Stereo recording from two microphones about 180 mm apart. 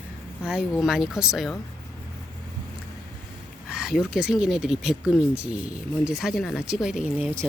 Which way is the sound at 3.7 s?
5° right (ahead or behind).